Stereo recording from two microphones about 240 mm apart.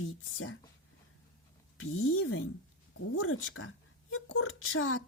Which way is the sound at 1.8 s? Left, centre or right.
Left.